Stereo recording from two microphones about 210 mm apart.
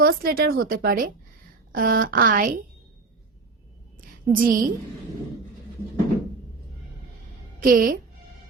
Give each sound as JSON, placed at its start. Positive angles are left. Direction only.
{"t": 0.0, "sound": "a woman's voice", "side_deg": -45}
{"t": 4.4, "sound": "a woman's voice", "side_deg": -40}
{"t": 7.6, "sound": "a woman's voice", "side_deg": -40}